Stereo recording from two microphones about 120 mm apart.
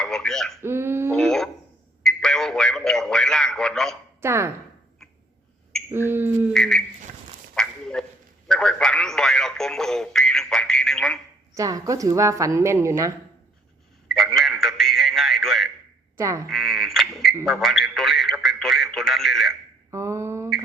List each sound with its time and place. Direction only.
0.0 s speech: 5° left (ahead or behind)
0.6 s speech: 20° right (ahead or behind)
1.1 s a sound: 5° left (ahead or behind)
2.0 s radio: 5° left (ahead or behind)
4.2 s a woman's voice: 20° right (ahead or behind)
5.9 s a sound: 20° right (ahead or behind)
6.5 s a sound: 5° left (ahead or behind)
11.5 s a woman's voice: 30° right (ahead or behind)
14.1 s a sound: centre (ahead or behind)
16.1 s a woman's voice: 25° right (ahead or behind)
16.5 s frog: centre (ahead or behind)
17.4 s radio: centre (ahead or behind)
19.9 s mantra: 25° right (ahead or behind)